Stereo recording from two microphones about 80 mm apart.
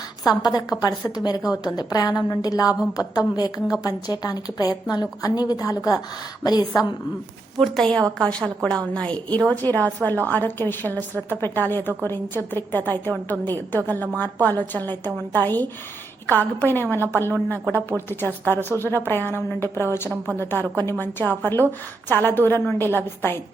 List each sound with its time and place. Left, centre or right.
0.3 s a woman's voice: left
7.6 s a woman's voice: centre; by 23.4 s left